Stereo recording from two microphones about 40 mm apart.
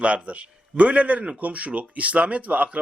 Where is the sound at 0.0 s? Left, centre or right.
Right.